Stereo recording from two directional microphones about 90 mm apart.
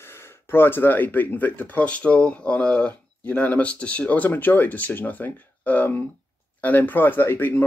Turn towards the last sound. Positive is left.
turn(degrees=25)  # may be behind; listen again after turning